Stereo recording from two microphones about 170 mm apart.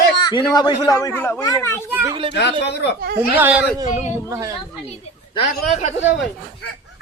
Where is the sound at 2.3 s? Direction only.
90° left.